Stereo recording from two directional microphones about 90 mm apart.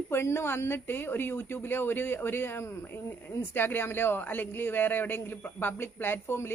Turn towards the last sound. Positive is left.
turn(degrees=30)  # may be behind; listen again after turning